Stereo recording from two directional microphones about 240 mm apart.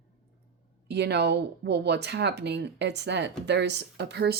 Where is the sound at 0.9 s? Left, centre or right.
Right.